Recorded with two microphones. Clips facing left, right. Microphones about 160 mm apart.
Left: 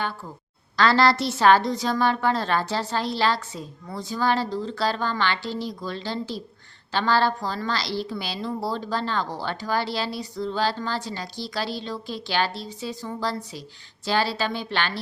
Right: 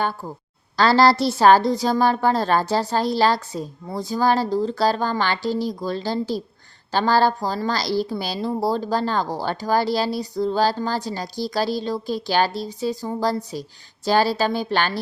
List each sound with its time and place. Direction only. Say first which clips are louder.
0.8 s a woman's voice: right 4 dB; 35° right (ahead or behind)